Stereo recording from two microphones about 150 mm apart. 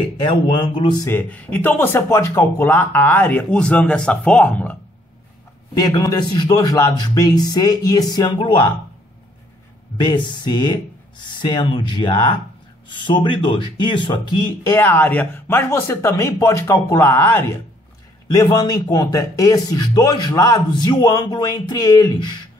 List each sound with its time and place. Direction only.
0.5 s speech: 30° left (ahead or behind)
1.0 s speech: 10° left (ahead or behind)
5.8 s a man's voice: 25° left (ahead or behind)
9.9 s a man's voice: 30° left (ahead or behind)
14.7 s speech: 15° left (ahead or behind)
18.3 s a man's voice: 25° left (ahead or behind)